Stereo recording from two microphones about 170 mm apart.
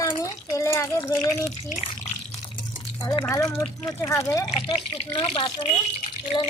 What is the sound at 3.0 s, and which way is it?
Speech, 20° left (ahead or behind).